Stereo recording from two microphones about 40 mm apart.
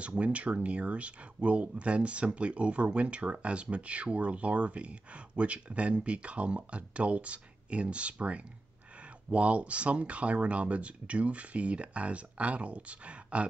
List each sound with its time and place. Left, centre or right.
0.1 s speech: right